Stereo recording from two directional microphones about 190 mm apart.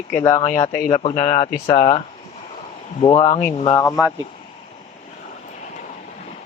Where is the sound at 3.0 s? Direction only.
35° left (ahead or behind).